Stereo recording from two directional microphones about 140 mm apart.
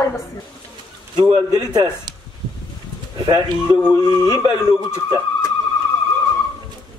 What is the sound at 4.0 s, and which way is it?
Speech, 30° right (ahead or behind).